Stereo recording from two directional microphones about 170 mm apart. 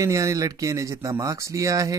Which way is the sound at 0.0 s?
20° right (ahead or behind).